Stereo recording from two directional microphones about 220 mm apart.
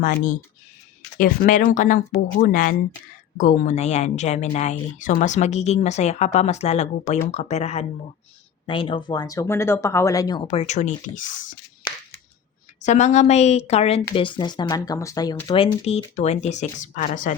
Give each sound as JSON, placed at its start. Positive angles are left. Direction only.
{"t": 0.0, "sound": "speech", "side_deg": 40}
{"t": 12.8, "sound": "speech", "side_deg": 30}